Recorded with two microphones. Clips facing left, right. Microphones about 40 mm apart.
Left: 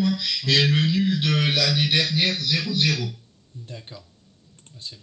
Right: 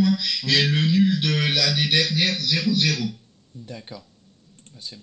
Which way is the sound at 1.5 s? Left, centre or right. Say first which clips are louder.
Even; centre.